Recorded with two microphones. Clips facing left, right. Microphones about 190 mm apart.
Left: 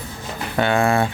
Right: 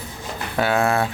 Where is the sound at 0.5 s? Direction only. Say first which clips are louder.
Left 2 dB; 5° right (ahead or behind).